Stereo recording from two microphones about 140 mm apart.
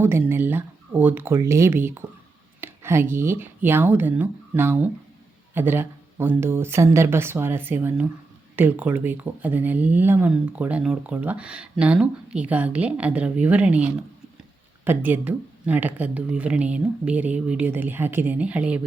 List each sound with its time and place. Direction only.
0.0 s speech: 15° right (ahead or behind)